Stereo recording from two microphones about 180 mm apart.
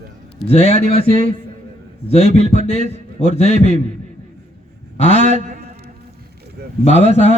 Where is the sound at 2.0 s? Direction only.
35° left (ahead or behind).